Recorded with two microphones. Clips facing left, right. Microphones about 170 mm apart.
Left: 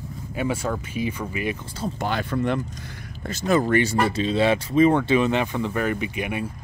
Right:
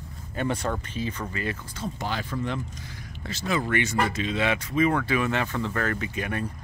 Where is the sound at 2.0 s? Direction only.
60° left (ahead or behind).